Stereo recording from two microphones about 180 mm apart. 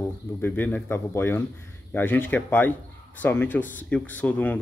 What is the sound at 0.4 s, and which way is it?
Speech, 10° left (ahead or behind).